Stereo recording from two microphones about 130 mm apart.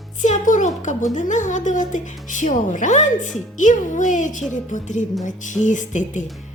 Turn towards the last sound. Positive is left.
turn(degrees=70)  # may be behind; listen again after turning